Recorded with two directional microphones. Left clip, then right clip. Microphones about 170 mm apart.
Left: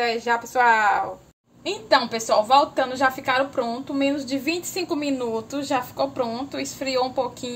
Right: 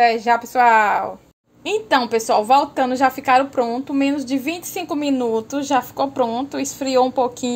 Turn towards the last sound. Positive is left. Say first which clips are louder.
# right 6 dB
turn(degrees=-40)  # may be behind; listen again after turning